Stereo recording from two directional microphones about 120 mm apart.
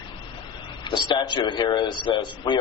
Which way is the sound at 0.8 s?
40° left (ahead or behind).